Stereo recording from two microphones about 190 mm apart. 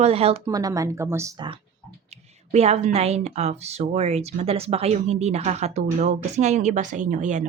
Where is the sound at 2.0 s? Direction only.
35° right (ahead or behind).